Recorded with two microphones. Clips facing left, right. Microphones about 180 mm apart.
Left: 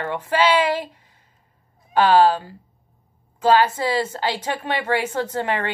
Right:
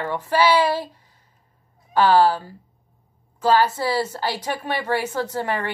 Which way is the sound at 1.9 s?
15° left (ahead or behind).